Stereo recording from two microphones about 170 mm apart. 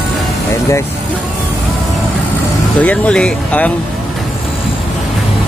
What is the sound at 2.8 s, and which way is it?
Speech, 5° left (ahead or behind).